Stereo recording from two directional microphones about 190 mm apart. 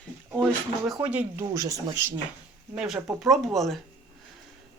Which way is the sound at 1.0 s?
5° right (ahead or behind).